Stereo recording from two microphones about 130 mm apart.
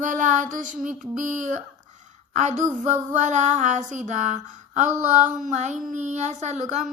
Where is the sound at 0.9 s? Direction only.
80° right.